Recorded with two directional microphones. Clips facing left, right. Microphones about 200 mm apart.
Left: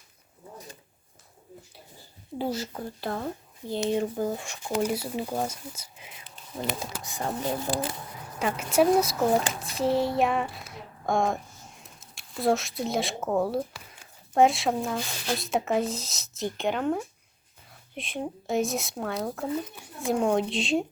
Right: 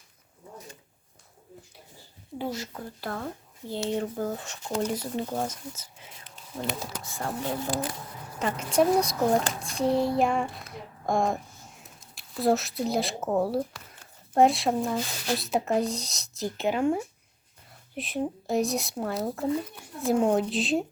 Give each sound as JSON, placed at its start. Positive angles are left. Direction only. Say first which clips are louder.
{"t": 2.4, "sound": "speech", "louder": "left 3 dB", "side_deg": 30}
{"t": 7.0, "sound": "speech", "louder": "left 2 dB", "side_deg": 20}
{"t": 7.7, "sound": "speech", "louder": "left 1 dB", "side_deg": 30}
{"t": 8.4, "sound": "speech", "louder": "left 1 dB", "side_deg": 10}